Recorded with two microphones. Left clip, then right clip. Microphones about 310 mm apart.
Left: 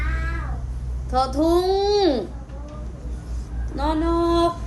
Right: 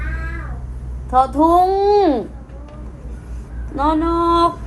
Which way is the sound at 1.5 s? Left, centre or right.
Centre.